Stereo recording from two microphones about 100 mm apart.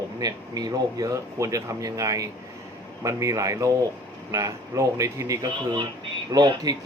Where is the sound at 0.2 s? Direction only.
40° right (ahead or behind).